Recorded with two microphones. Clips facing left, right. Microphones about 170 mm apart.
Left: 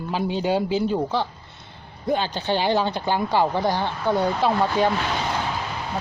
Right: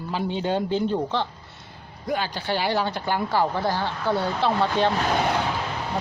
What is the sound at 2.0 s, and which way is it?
Speech, 25° left (ahead or behind).